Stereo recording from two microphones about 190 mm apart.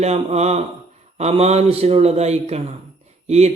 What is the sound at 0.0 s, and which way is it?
Speech, 35° right (ahead or behind).